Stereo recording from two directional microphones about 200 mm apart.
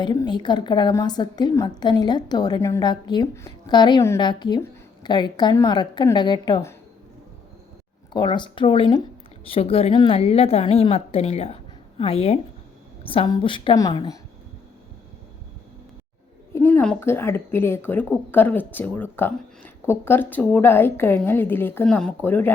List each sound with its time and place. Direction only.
0.0 s a woman's voice: 20° left (ahead or behind)
8.1 s a woman's voice: 20° left (ahead or behind)
16.5 s speech: 10° left (ahead or behind)